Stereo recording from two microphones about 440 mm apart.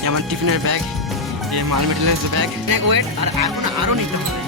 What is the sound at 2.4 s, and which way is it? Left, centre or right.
Speech, right.